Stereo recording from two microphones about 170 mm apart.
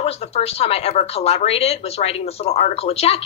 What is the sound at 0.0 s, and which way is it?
Speech, 35° left (ahead or behind).